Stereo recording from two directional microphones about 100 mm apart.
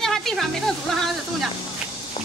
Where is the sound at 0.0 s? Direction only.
5° left (ahead or behind).